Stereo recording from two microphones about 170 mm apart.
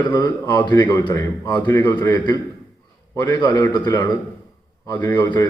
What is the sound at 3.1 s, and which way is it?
A man's voice, 25° left (ahead or behind).